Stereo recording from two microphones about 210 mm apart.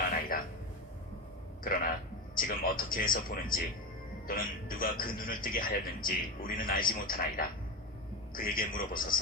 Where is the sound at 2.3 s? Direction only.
40° left (ahead or behind).